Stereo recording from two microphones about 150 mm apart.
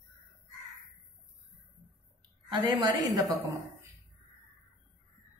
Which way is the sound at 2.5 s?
30° right (ahead or behind).